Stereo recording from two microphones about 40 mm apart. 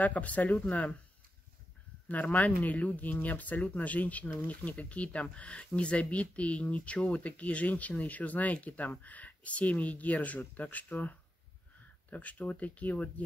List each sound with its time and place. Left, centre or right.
0.0 s speech: left
2.0 s speech: left